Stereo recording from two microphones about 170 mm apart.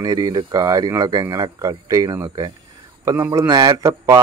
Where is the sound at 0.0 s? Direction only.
20° right (ahead or behind).